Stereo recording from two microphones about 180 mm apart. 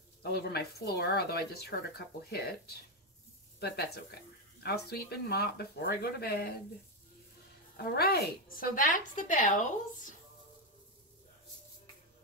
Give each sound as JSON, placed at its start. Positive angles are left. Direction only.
{"t": 0.2, "sound": "speech", "side_deg": 60}
{"t": 7.7, "sound": "a woman's voice", "side_deg": 65}